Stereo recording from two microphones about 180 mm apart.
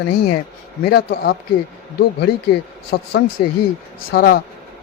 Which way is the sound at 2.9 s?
60° left (ahead or behind).